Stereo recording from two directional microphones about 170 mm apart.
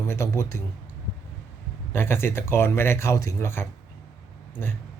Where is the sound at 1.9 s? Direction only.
15° left (ahead or behind).